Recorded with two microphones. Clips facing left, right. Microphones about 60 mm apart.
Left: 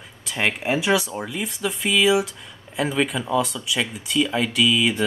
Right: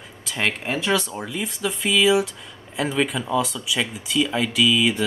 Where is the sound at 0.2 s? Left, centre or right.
Centre.